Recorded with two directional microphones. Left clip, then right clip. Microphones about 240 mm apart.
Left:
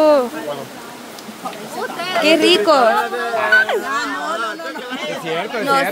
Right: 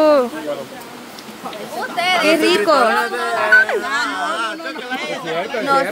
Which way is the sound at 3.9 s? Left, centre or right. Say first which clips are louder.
Right 1 dB; right.